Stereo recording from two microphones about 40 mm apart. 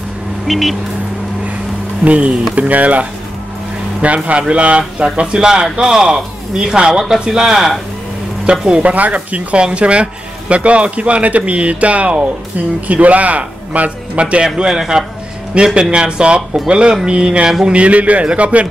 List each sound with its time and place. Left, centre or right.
0.5 s speech: centre
2.0 s a man's voice: right; by 7.7 s centre
8.5 s a man's voice: right
8.9 s speech: right
14.3 s a man's voice: right
17.7 s speech: right